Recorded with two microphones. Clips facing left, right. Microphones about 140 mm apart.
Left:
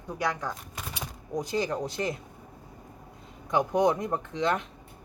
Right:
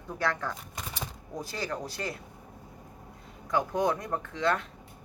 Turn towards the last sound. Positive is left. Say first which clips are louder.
# left 1 dB
turn(degrees=20)  # may be behind; listen again after turning